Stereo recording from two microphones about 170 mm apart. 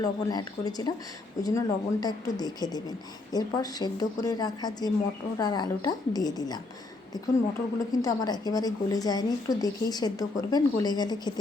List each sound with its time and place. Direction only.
0.0 s a woman's voice: 20° left (ahead or behind)
7.8 s a woman's voice: 20° left (ahead or behind)